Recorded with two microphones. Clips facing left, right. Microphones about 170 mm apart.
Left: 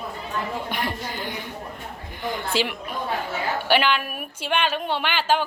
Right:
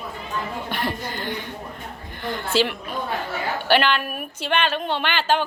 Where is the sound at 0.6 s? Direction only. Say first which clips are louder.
Right 1 dB; 15° left (ahead or behind).